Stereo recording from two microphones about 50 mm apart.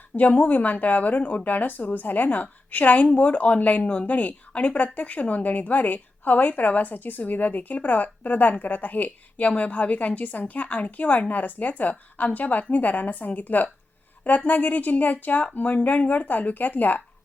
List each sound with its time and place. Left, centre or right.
0.2 s a woman's voice: left